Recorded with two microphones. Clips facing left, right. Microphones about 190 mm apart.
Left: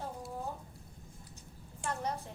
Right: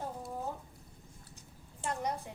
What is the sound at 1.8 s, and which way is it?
Speech, 15° right (ahead or behind).